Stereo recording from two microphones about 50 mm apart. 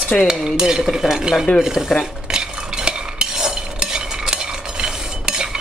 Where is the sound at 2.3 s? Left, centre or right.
Centre.